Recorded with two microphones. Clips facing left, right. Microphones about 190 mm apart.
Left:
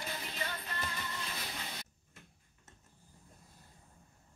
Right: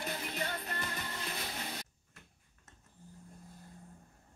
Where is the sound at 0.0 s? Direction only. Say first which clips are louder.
Right 3 dB; 50° right (ahead or behind).